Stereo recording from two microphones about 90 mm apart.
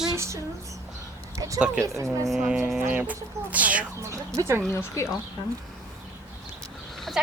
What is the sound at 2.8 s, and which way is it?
Speech, 20° right (ahead or behind).